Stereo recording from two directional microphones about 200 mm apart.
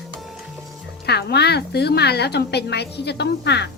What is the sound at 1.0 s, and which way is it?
A woman's voice, 55° left (ahead or behind).